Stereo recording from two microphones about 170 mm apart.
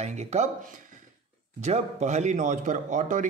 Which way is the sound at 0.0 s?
40° right (ahead or behind).